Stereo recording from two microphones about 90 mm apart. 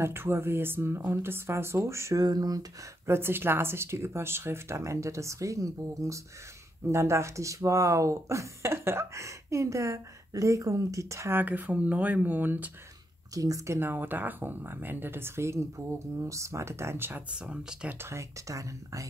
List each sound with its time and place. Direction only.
0.0 s speech: 25° right (ahead or behind)
2.2 s speech: 45° right (ahead or behind)
3.1 s speech: 25° right (ahead or behind)
11.3 s speech: 20° right (ahead or behind)
13.3 s speech: 40° right (ahead or behind)
13.7 s speech: 20° right (ahead or behind)
17.4 s speech: 10° right (ahead or behind)
17.9 s speech: 35° right (ahead or behind)